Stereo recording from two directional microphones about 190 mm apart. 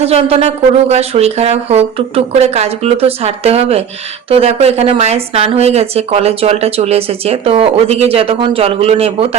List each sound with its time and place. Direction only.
0.0 s speech: 30° right (ahead or behind)